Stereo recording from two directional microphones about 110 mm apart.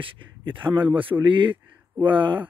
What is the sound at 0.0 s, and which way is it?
Speech, 50° right (ahead or behind).